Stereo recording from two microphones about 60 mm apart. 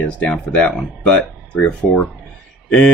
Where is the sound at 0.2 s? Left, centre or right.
Left.